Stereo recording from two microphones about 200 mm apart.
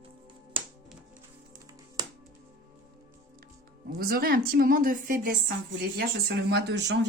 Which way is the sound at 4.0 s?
50° right (ahead or behind).